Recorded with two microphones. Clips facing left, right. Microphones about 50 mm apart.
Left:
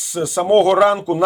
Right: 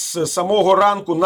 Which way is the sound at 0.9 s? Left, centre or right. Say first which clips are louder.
Even; centre.